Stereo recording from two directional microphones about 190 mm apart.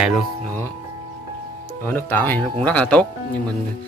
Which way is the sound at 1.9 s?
10° left (ahead or behind).